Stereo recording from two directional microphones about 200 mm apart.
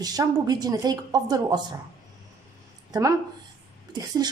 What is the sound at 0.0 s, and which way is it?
Speech, 20° right (ahead or behind).